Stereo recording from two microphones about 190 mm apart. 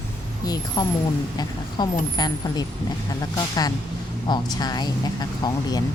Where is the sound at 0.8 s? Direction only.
20° left (ahead or behind).